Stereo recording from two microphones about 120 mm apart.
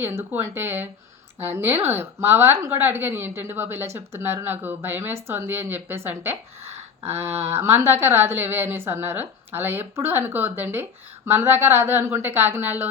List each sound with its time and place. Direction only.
0.0 s a woman's voice: 20° right (ahead or behind)